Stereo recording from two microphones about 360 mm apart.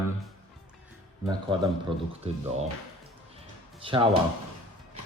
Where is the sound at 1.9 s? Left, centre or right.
Centre.